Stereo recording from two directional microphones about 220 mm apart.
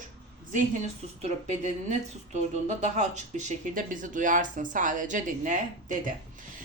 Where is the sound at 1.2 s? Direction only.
35° right (ahead or behind).